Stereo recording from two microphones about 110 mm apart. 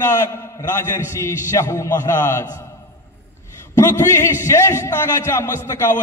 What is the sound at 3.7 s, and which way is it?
A man's voice, 25° left (ahead or behind).